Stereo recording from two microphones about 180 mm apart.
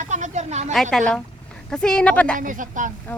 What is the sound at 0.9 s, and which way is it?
Speech, 5° left (ahead or behind).